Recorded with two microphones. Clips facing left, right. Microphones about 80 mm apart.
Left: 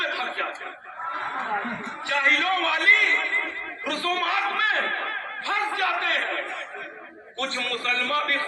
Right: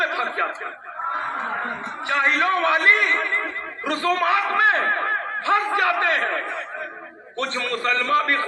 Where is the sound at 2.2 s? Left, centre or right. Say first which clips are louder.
Right 3 dB; right.